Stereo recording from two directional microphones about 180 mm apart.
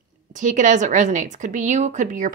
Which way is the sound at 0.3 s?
45° right (ahead or behind).